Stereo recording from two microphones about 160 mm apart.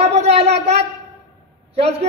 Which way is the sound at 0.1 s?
40° right (ahead or behind).